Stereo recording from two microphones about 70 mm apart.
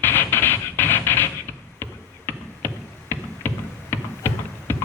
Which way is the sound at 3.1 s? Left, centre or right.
Left.